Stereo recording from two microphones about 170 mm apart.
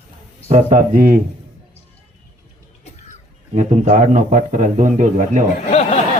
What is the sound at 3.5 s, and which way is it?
A man's voice, 45° right (ahead or behind).